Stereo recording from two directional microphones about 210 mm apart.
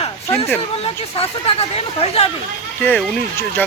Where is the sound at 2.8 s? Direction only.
10° left (ahead or behind).